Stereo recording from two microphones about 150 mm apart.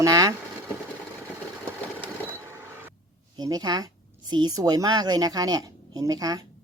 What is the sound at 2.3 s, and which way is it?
Vehicle, 15° right (ahead or behind).